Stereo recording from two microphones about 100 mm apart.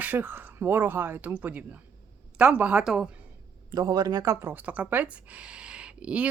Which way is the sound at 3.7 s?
40° right (ahead or behind).